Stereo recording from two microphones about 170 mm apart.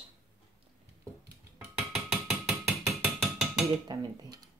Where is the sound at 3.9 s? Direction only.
25° right (ahead or behind).